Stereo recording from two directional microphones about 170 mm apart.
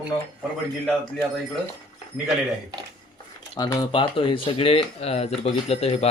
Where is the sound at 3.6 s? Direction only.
20° left (ahead or behind).